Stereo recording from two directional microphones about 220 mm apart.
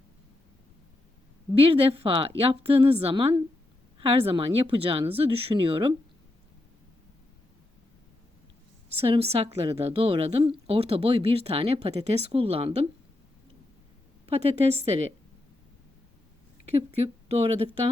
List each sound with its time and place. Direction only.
1.5 s a woman's voice: 25° right (ahead or behind)
9.0 s a woman's voice: 25° right (ahead or behind)
14.3 s a woman's voice: 30° right (ahead or behind)
17.2 s speech: 25° right (ahead or behind)